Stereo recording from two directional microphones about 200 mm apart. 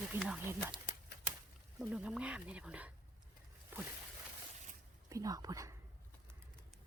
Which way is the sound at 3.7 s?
10° right (ahead or behind).